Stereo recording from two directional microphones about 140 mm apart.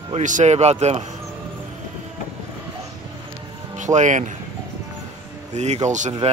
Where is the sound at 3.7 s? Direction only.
60° right (ahead or behind).